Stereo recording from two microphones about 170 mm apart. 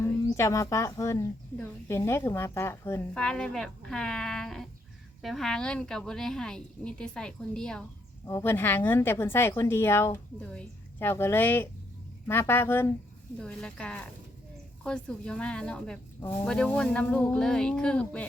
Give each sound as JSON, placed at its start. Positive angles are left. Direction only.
{"t": 0.3, "sound": "a woman's voice", "side_deg": 20}
{"t": 8.3, "sound": "a woman's voice", "side_deg": 15}